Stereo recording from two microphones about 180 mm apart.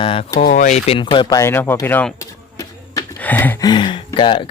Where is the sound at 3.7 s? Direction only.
25° left (ahead or behind).